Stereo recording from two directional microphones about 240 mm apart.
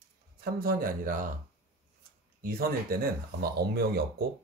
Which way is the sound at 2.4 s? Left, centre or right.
Right.